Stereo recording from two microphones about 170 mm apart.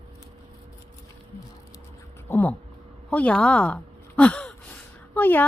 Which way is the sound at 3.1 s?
10° left (ahead or behind).